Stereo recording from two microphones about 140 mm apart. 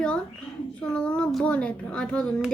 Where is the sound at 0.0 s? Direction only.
5° left (ahead or behind).